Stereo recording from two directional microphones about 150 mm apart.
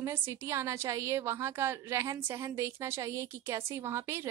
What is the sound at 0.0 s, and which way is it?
A woman's voice, 15° right (ahead or behind).